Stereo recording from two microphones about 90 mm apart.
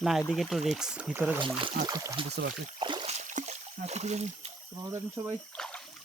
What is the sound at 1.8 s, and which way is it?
Speech, 40° right (ahead or behind).